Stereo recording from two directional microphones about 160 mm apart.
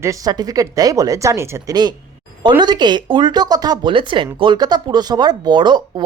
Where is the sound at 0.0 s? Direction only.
20° right (ahead or behind).